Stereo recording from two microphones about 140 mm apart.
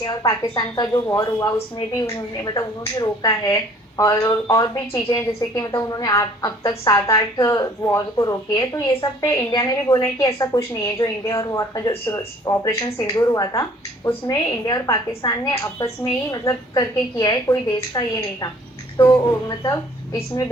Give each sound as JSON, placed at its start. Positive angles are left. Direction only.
{"t": 0.0, "sound": "a woman's voice", "side_deg": 25}